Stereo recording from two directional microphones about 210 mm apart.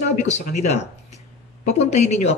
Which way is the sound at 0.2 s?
35° left (ahead or behind).